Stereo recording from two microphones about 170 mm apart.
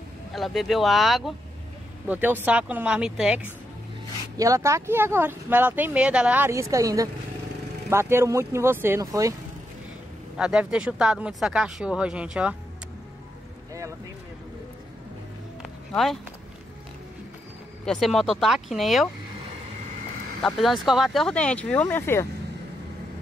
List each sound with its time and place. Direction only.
0.3 s speech: centre (ahead or behind)
2.0 s speech: 10° right (ahead or behind)
4.4 s speech: 20° right (ahead or behind)
10.3 s speech: 5° right (ahead or behind)
15.9 s speech: centre (ahead or behind)
17.8 s speech: centre (ahead or behind)
20.4 s speech: centre (ahead or behind); by 22.3 s 15° left (ahead or behind)